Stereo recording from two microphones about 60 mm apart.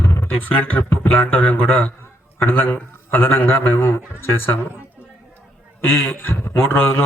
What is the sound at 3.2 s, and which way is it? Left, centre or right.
Speech, left.